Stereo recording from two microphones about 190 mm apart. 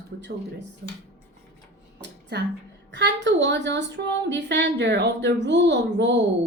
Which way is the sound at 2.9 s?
65° right (ahead or behind).